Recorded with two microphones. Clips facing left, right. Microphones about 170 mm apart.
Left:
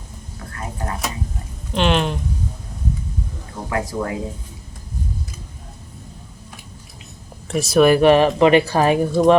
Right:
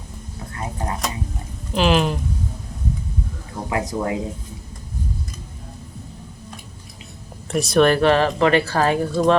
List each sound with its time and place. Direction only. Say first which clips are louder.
1.7 s speech: right 1 dB; centre (ahead or behind)
3.7 s speech: even; 20° right (ahead or behind)
7.4 s speech: left 2 dB; centre (ahead or behind); by 9.3 s 15° left (ahead or behind)